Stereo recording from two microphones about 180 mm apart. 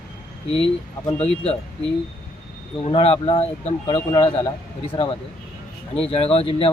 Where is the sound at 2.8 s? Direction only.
30° left (ahead or behind).